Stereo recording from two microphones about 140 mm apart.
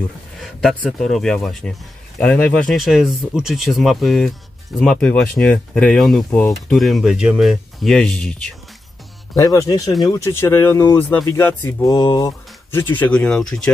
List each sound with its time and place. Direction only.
0.4 s speech: centre (ahead or behind)
9.3 s speech: 25° left (ahead or behind)
11.9 s speech: 25° left (ahead or behind); by 13.7 s 5° left (ahead or behind)